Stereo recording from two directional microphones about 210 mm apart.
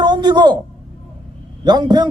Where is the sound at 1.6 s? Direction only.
20° right (ahead or behind).